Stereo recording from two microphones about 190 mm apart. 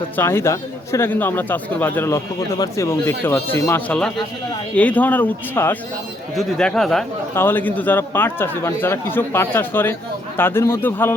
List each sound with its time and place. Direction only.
0.2 s a man's voice: 15° left (ahead or behind)